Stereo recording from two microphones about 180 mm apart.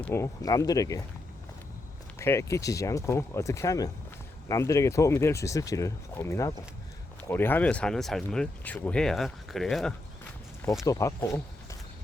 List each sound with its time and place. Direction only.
0.0 s speech: 15° left (ahead or behind)
2.1 s speech: 15° left (ahead or behind)
10.8 s speech: 15° left (ahead or behind)